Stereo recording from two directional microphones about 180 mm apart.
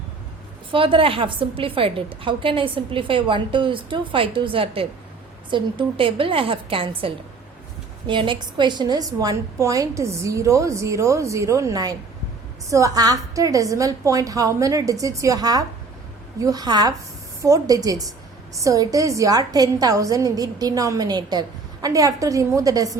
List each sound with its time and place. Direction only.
0.7 s a woman's voice: 30° right (ahead or behind)